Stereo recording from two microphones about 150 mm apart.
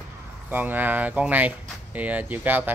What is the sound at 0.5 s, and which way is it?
Speech, 10° right (ahead or behind).